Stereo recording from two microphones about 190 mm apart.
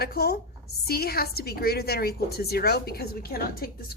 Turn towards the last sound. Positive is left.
turn(degrees=55)  # may be behind; listen again after turning